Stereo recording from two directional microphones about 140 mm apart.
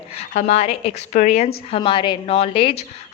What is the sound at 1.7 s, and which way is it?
A woman's voice, 40° left (ahead or behind).